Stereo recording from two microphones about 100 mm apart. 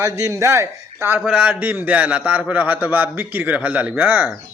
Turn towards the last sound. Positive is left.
turn(degrees=-15)  # may be behind; listen again after turning